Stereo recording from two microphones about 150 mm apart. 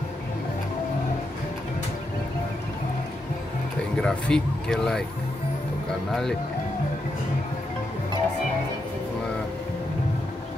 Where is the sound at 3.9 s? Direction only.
5° left (ahead or behind).